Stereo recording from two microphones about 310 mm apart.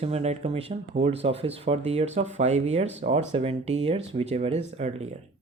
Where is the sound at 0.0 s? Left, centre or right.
Right.